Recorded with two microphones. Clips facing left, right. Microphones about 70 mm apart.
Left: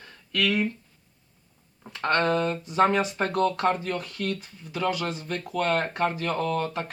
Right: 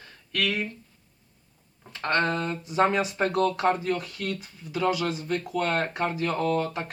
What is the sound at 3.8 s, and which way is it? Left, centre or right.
Speech, centre.